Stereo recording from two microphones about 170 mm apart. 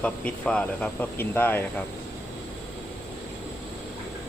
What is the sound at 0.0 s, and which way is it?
Speech, 5° left (ahead or behind).